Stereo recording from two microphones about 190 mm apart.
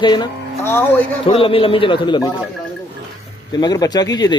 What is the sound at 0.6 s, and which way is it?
Speech, 10° left (ahead or behind).